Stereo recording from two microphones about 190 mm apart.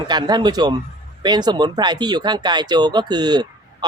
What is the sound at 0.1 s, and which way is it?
Speech, 20° right (ahead or behind).